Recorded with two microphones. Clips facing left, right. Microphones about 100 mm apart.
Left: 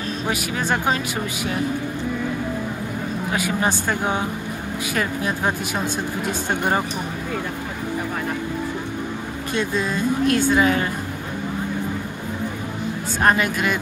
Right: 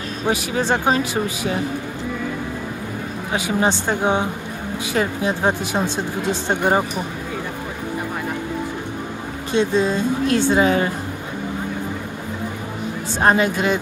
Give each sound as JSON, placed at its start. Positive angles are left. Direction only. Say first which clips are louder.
{"t": 0.3, "sound": "speech", "louder": "right 4 dB", "side_deg": -30}
{"t": 3.3, "sound": "speech", "louder": "right 3 dB", "side_deg": -25}
{"t": 9.5, "sound": "speech", "louder": "right 6 dB", "side_deg": -30}
{"t": 13.2, "sound": "speech", "louder": "right 2 dB", "side_deg": -25}